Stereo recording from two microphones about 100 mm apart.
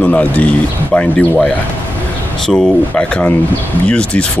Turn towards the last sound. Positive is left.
turn(degrees=10)  # may be behind; listen again after turning